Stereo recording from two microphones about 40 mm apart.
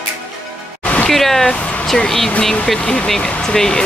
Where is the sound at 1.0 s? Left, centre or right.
Centre.